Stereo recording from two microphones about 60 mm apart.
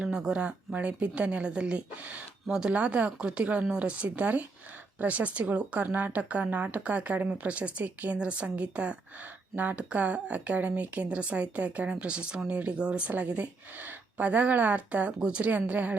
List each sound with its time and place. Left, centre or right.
0.0 s a woman's voice: centre